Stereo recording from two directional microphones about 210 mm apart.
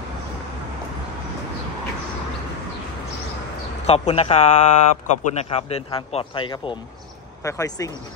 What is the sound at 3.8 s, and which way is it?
A man's voice, 30° left (ahead or behind).